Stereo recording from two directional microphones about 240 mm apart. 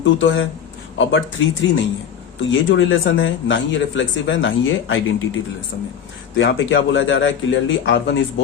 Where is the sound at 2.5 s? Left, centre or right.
Left.